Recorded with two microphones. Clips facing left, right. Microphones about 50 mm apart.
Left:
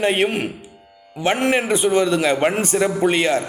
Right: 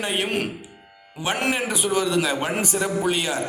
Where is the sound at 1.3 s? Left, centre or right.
Left.